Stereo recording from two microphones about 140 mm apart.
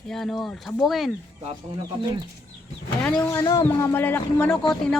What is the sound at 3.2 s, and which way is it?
Speech, 20° left (ahead or behind).